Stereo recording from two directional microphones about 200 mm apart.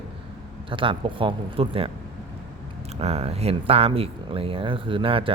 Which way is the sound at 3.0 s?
30° right (ahead or behind).